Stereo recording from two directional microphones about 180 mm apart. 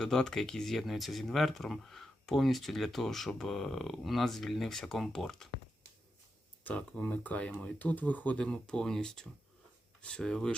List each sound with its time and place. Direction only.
0.0 s speech: 5° left (ahead or behind)
6.7 s speech: 5° left (ahead or behind)